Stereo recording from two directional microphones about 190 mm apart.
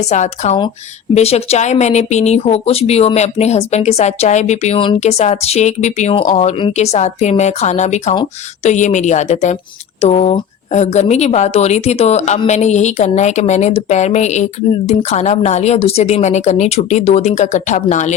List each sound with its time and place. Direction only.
0.0 s speech: 35° left (ahead or behind)